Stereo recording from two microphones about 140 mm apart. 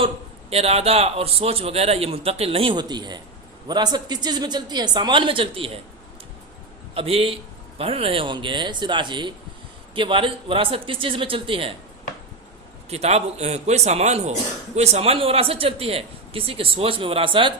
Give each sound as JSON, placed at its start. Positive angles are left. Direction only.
{"t": 0.5, "sound": "a woman's voice", "side_deg": -45}
{"t": 6.9, "sound": "a woman's voice", "side_deg": -45}
{"t": 12.9, "sound": "speech", "side_deg": -50}